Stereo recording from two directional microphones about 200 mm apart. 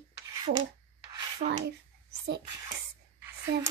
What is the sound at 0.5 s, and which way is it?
Child singing, 60° right (ahead or behind).